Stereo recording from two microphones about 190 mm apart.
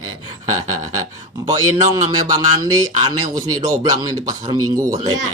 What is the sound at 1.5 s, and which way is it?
A man's voice, 20° right (ahead or behind).